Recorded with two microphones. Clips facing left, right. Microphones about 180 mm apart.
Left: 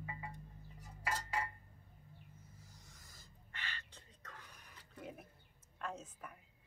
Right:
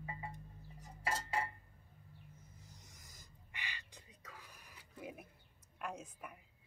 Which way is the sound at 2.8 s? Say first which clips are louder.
Right 1 dB; 20° right (ahead or behind).